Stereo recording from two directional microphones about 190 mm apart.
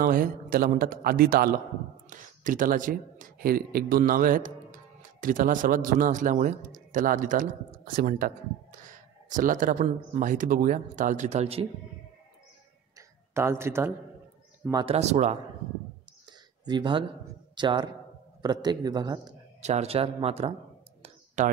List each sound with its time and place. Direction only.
0.0 s speech: 45° right (ahead or behind)
12.9 s a sound: 15° right (ahead or behind)
14.7 s a man's voice: 25° right (ahead or behind)
15.0 s speech: 35° right (ahead or behind)
16.3 s a sound: 25° right (ahead or behind)
17.6 s a man's voice: 25° right (ahead or behind)
19.6 s speech: 35° right (ahead or behind)